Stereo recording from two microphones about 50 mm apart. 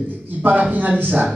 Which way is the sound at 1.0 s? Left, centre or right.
Right.